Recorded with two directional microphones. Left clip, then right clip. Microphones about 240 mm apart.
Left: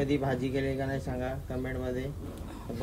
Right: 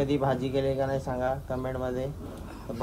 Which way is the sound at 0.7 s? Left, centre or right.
Right.